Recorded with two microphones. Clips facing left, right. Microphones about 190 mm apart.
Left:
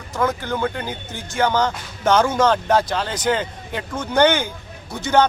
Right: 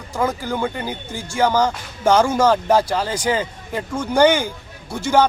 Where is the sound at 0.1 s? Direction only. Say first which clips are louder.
Even; 10° right (ahead or behind).